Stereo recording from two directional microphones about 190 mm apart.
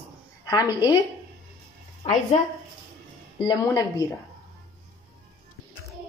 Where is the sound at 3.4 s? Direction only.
20° left (ahead or behind).